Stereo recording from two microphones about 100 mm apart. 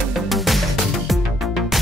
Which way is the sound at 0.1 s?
Centre (ahead or behind).